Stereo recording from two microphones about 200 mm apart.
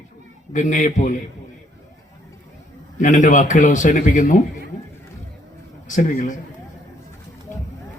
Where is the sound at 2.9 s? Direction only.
40° left (ahead or behind).